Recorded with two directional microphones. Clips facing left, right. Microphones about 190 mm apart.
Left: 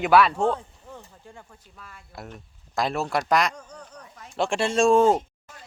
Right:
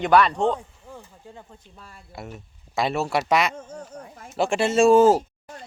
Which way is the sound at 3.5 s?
25° right (ahead or behind).